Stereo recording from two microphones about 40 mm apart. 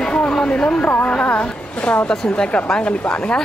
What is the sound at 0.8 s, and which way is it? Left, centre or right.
Speech, left.